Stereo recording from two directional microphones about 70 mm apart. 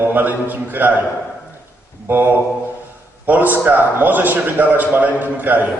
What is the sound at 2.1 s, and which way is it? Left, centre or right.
Mantra, right.